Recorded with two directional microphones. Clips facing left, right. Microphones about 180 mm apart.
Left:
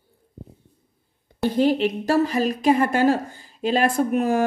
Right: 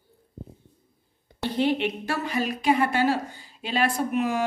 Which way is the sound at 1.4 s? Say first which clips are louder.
Left 5 dB; 40° left (ahead or behind).